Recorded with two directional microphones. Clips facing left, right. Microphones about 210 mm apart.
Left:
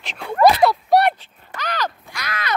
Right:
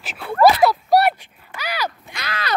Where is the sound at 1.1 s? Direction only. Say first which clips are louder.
Left 2 dB; 15° right (ahead or behind).